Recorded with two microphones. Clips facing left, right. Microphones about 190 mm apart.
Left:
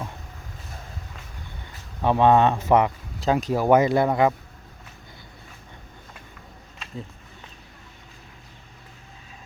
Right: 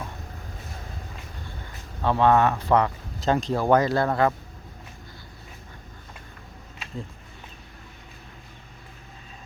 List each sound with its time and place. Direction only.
2.0 s speech: 15° left (ahead or behind)
3.2 s speech: 5° left (ahead or behind)